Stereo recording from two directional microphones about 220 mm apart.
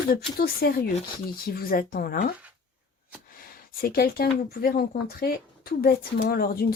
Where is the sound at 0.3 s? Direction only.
45° left (ahead or behind).